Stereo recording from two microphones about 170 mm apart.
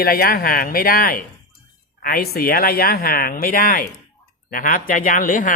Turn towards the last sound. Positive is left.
turn(degrees=55)  # may be behind; listen again after turning